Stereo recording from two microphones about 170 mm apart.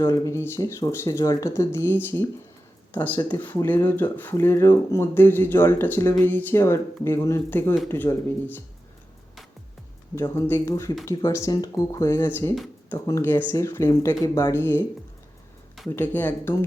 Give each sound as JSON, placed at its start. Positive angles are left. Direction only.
{"t": 0.0, "sound": "speech", "side_deg": 15}
{"t": 10.2, "sound": "speech", "side_deg": 15}
{"t": 16.0, "sound": "speech", "side_deg": 10}